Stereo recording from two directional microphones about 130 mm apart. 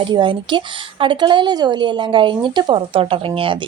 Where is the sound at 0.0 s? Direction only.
40° right (ahead or behind).